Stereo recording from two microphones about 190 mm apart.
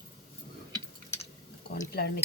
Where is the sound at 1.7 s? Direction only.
55° left (ahead or behind).